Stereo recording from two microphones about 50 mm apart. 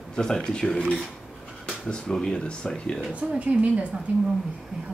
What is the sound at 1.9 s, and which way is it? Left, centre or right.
Speech, centre.